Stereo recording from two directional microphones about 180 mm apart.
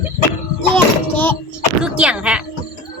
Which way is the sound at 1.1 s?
10° left (ahead or behind).